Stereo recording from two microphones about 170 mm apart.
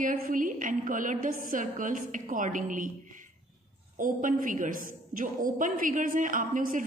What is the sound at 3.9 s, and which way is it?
A woman's voice, 55° right (ahead or behind).